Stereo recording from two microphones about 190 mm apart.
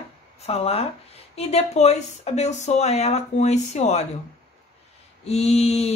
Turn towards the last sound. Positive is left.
turn(degrees=35)  # may be behind; listen again after turning